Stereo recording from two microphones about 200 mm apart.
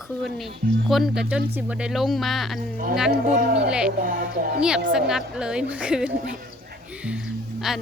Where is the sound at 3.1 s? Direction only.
60° right (ahead or behind).